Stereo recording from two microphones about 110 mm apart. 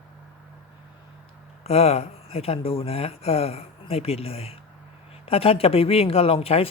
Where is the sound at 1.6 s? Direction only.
70° left (ahead or behind).